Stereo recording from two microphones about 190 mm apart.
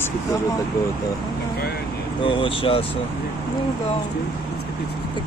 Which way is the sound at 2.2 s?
30° left (ahead or behind).